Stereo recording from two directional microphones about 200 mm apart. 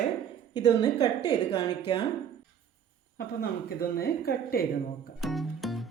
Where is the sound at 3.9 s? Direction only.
50° left (ahead or behind).